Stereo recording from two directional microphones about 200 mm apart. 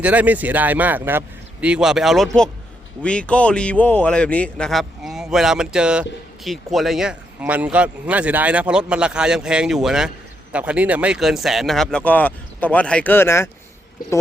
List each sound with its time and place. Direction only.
0.0 s speech: 10° right (ahead or behind); by 13.5 s 10° left (ahead or behind)